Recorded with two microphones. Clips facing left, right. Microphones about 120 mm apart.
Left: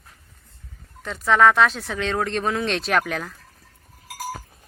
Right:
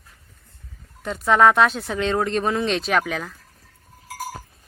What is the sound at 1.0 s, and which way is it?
Speech, 5° right (ahead or behind).